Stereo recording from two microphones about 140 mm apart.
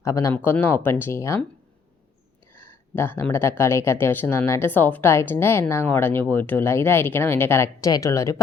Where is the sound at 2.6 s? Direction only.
15° left (ahead or behind).